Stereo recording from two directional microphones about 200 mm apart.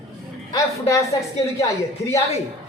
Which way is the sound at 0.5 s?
15° left (ahead or behind).